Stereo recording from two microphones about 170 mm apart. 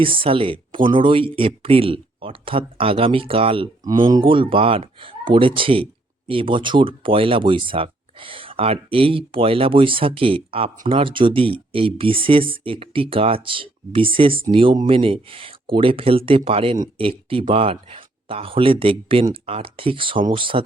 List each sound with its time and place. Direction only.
0.0 s speech: 30° right (ahead or behind)